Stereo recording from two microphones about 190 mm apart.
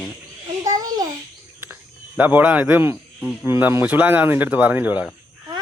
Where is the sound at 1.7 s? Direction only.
10° right (ahead or behind).